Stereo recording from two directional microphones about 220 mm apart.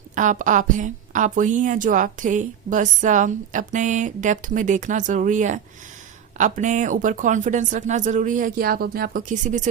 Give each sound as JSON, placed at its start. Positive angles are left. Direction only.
{"t": 0.2, "sound": "a woman's voice", "side_deg": -35}